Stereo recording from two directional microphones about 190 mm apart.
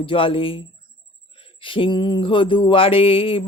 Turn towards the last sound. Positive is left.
turn(degrees=30)  # may be behind; listen again after turning